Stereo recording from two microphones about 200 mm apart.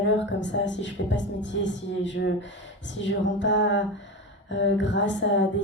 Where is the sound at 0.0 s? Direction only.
65° left (ahead or behind).